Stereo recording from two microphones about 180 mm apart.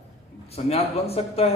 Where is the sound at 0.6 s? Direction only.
35° left (ahead or behind).